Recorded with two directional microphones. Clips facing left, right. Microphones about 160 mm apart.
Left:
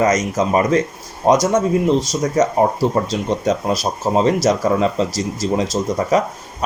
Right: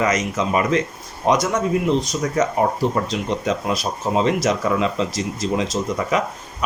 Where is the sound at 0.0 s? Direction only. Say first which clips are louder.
Left 4 dB; 45° left (ahead or behind).